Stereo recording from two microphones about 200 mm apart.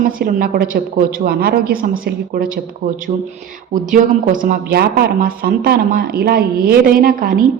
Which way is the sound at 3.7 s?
40° right (ahead or behind).